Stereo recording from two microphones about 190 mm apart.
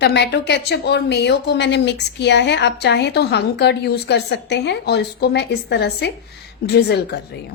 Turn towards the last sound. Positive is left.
turn(degrees=60)  # may be behind; listen again after turning